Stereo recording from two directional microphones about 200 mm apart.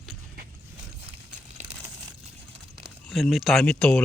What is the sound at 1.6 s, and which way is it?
Crumpling, 10° right (ahead or behind).